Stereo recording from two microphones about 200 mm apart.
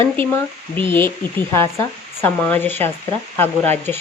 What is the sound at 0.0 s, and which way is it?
Speech, 10° left (ahead or behind).